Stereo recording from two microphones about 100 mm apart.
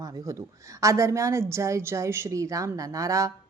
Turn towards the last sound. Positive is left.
turn(degrees=-35)  # may be behind; listen again after turning